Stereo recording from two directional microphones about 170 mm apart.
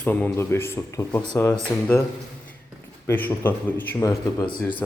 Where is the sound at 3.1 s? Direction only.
10° left (ahead or behind).